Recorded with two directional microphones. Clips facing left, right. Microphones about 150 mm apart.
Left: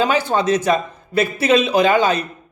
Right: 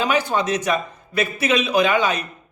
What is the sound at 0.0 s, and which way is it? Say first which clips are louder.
A man's voice: left 3 dB; 30° left (ahead or behind).